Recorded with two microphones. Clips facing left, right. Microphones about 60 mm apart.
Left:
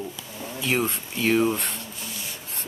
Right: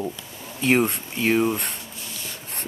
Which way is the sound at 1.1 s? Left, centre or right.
Centre.